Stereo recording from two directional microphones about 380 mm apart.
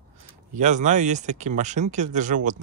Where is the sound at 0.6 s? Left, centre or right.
Centre.